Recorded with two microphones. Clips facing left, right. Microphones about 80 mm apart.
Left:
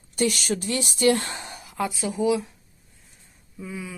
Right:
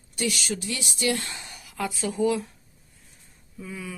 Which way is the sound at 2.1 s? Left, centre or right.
Centre.